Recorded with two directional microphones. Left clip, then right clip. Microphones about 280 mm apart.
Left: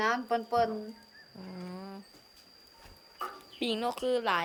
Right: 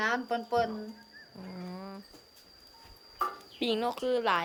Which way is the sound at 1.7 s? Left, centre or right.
Centre.